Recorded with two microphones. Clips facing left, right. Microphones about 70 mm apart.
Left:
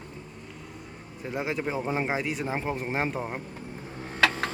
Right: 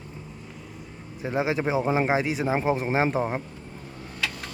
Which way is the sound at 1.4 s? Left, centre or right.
Centre.